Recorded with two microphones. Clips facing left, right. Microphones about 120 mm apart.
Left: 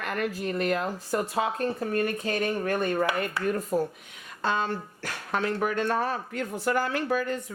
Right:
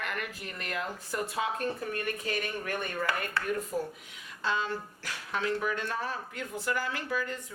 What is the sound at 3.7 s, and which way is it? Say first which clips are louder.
Speech: left 7 dB; 50° left (ahead or behind).